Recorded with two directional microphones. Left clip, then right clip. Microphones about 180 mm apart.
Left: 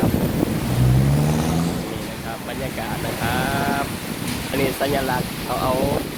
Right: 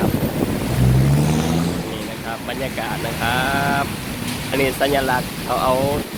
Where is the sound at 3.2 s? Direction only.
5° left (ahead or behind).